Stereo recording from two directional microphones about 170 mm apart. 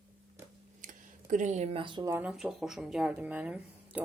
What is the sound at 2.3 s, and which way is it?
A woman's voice, centre (ahead or behind).